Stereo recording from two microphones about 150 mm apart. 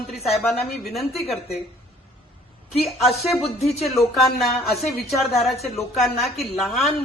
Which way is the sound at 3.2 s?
Centre (ahead or behind).